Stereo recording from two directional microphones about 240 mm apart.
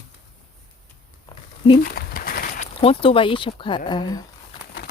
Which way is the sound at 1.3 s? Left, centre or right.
Left.